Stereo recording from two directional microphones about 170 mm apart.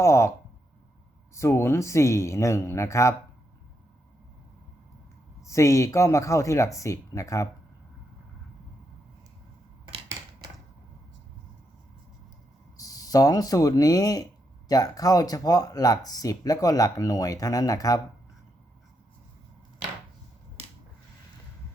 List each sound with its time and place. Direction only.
0.0 s speech: 15° left (ahead or behind)
1.4 s speech: 15° left (ahead or behind)
5.5 s speech: 15° left (ahead or behind)
12.7 s speech: 20° left (ahead or behind)